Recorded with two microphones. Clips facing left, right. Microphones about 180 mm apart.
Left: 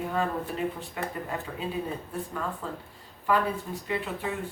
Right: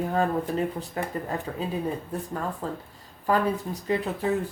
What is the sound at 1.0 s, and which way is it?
Speech, 40° right (ahead or behind).